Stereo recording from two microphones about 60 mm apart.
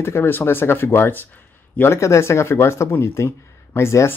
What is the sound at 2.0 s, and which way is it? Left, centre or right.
Speech, left.